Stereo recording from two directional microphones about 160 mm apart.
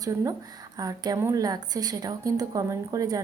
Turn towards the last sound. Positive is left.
turn(degrees=-20)  # may be behind; listen again after turning